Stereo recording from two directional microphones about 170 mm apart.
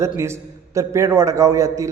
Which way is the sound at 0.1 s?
15° right (ahead or behind).